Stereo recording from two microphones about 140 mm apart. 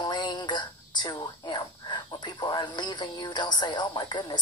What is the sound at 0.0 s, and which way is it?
A woman's voice, 35° left (ahead or behind).